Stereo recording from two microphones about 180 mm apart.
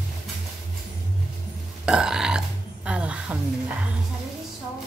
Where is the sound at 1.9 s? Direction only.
5° right (ahead or behind).